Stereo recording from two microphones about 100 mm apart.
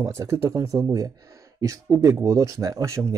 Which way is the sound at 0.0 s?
35° right (ahead or behind).